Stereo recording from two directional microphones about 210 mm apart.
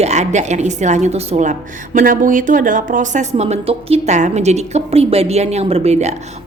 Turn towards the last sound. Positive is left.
turn(degrees=-30)  # may be behind; listen again after turning